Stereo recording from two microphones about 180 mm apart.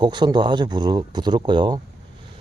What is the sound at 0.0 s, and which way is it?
Speech, 25° right (ahead or behind).